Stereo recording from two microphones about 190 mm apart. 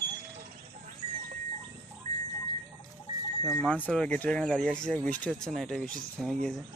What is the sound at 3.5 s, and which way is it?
Speech, 5° left (ahead or behind).